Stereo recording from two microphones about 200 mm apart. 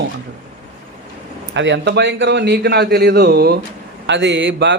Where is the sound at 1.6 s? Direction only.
65° right (ahead or behind).